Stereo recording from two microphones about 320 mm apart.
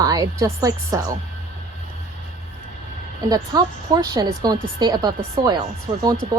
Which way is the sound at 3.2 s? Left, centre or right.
Centre.